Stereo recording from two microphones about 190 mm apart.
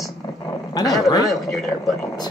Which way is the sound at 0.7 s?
20° left (ahead or behind).